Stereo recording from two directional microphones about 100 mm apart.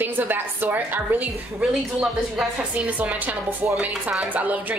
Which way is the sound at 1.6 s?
5° right (ahead or behind).